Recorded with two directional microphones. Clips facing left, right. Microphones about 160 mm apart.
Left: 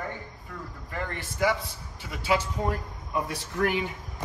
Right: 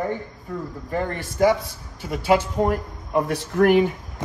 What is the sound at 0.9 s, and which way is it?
A man's voice, 40° right (ahead or behind).